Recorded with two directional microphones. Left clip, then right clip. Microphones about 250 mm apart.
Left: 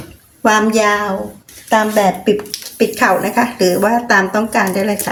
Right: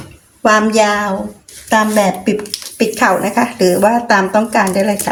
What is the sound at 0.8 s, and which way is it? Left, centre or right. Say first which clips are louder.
Speech: right 1 dB; centre.